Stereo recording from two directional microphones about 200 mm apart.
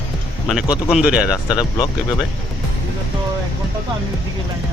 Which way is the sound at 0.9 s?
5° right (ahead or behind).